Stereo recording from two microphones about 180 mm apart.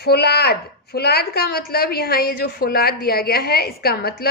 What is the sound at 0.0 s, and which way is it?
A woman's voice, 60° left (ahead or behind).